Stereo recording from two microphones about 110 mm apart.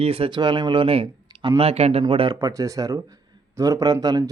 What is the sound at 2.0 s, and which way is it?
Speech, 50° right (ahead or behind).